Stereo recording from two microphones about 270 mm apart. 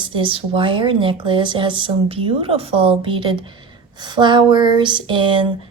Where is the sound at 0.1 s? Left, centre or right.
Centre.